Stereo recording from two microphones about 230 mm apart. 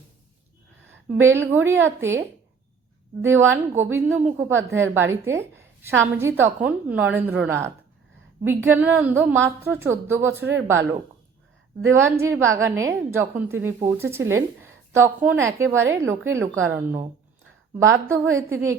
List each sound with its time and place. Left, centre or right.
0.9 s a woman's voice: centre
11.9 s a woman's voice: centre
18.1 s a woman's voice: centre